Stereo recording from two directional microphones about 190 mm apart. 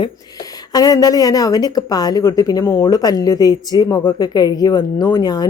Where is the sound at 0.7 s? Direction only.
20° left (ahead or behind).